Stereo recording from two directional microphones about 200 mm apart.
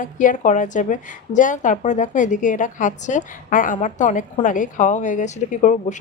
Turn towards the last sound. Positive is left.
turn(degrees=40)  # may be behind; listen again after turning